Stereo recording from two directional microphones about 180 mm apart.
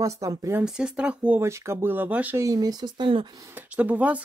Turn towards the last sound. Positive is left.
turn(degrees=-5)  # may be behind; listen again after turning